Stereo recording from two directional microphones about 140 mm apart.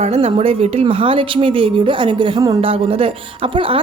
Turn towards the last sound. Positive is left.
turn(degrees=-40)  # may be behind; listen again after turning